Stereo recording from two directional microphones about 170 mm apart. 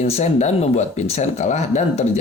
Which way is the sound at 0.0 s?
40° left (ahead or behind).